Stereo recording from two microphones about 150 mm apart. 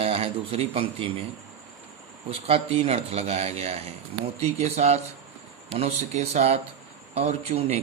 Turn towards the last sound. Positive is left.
turn(degrees=-45)  # may be behind; listen again after turning